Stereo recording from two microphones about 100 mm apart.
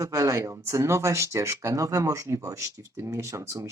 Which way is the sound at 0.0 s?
35° right (ahead or behind).